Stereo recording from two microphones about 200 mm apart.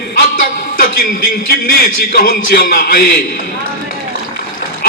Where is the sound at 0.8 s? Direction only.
45° left (ahead or behind).